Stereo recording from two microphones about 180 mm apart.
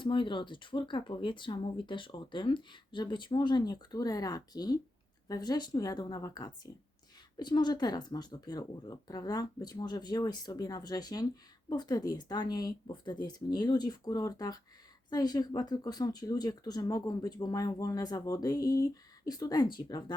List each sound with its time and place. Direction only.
0.0 s speech: 25° left (ahead or behind)